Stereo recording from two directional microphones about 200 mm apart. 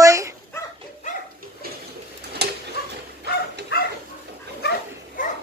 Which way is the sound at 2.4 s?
55° right (ahead or behind).